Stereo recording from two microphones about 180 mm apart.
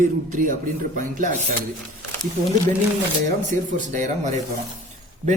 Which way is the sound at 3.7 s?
45° right (ahead or behind).